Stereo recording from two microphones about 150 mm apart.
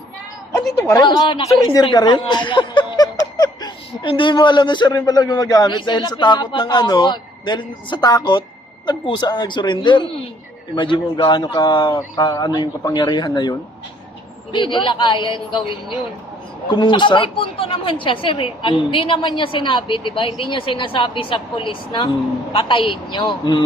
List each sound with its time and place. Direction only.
0.9 s a woman's voice: 30° left (ahead or behind)
16.6 s a woman's voice: 30° left (ahead or behind)